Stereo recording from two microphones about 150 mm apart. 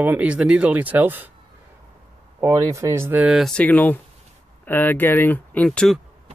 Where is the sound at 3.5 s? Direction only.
10° left (ahead or behind).